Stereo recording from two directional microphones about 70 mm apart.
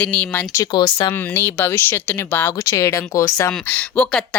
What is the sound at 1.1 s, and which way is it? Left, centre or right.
Speech, left.